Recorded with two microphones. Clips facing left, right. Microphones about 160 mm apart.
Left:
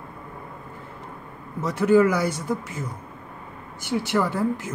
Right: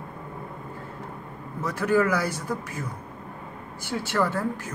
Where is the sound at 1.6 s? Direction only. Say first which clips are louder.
Left 5 dB; 25° left (ahead or behind).